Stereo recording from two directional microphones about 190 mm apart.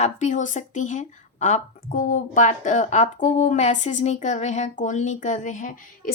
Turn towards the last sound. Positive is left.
turn(degrees=45)  # may be behind; listen again after turning